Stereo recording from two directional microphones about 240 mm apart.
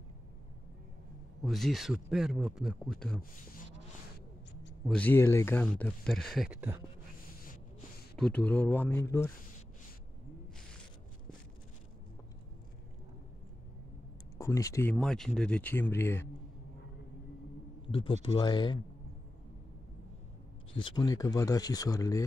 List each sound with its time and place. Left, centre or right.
1.4 s speech: centre
4.8 s speech: centre
8.2 s speech: centre
14.4 s speech: centre
17.8 s speech: left
20.8 s speech: centre